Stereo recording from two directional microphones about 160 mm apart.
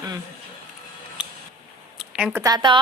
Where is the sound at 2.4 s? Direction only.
25° right (ahead or behind).